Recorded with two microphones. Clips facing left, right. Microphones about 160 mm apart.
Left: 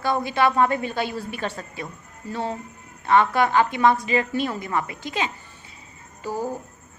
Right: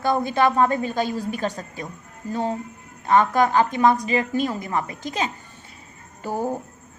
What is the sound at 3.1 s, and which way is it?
A woman's voice, 40° right (ahead or behind).